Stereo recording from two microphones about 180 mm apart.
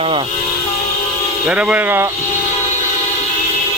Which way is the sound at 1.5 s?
5° right (ahead or behind).